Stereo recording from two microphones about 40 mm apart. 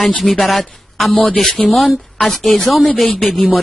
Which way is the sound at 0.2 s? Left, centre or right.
Centre.